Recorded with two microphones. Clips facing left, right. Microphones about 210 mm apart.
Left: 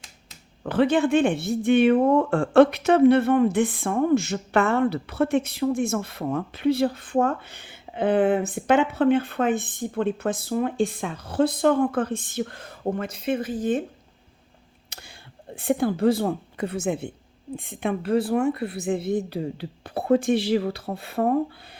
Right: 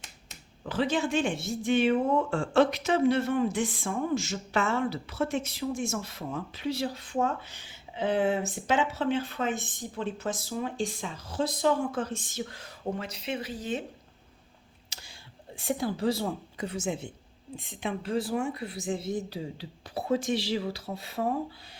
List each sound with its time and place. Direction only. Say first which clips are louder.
0.6 s speech: left 8 dB; 60° left (ahead or behind)
14.8 s a sound: left 5 dB; 60° left (ahead or behind)
15.5 s speech: left 7 dB; 55° left (ahead or behind)